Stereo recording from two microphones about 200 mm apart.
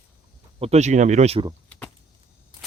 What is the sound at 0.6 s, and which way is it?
Speech, 35° right (ahead or behind).